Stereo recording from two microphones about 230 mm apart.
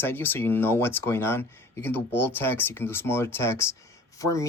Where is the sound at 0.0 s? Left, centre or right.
Centre.